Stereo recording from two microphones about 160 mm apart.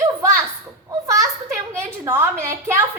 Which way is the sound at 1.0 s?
20° right (ahead or behind).